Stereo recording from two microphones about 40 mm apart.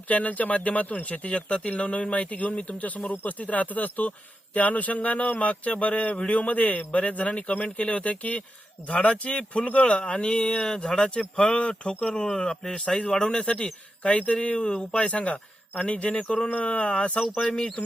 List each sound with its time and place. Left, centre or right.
0.1 s speech: left
17.4 s speech: left